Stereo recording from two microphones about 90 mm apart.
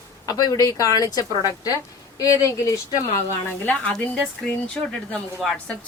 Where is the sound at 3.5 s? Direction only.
20° left (ahead or behind).